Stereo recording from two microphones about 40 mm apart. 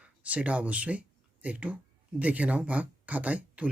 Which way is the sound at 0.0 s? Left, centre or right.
Right.